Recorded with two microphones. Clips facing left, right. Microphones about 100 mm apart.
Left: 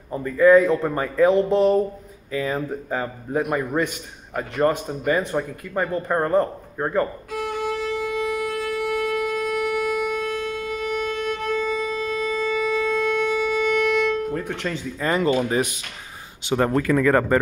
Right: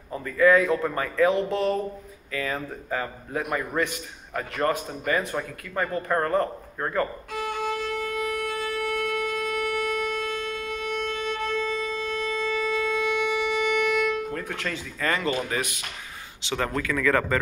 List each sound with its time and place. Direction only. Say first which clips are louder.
0.2 s speech: left 5 dB; 20° left (ahead or behind)
1.3 s speech: left 7 dB; 35° left (ahead or behind)
2.3 s speech: left 5 dB; 20° left (ahead or behind)
7.2 s violin: left 3 dB; 5° left (ahead or behind)
12.9 s music: left 4 dB; 10° right (ahead or behind)
14.3 s speech: left 4 dB; 15° left (ahead or behind)
16.5 s speech: left 7 dB; 30° left (ahead or behind)